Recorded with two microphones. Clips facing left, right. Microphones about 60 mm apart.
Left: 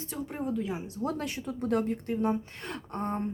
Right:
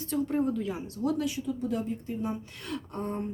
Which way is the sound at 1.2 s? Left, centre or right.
Left.